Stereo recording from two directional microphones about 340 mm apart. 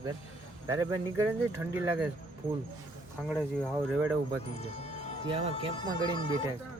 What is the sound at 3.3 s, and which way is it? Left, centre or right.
Speech, centre.